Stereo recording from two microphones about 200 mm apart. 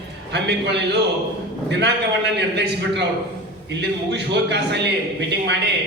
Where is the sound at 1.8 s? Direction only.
55° right (ahead or behind).